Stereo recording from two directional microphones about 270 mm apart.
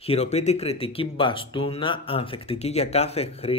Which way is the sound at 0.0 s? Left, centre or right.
Left.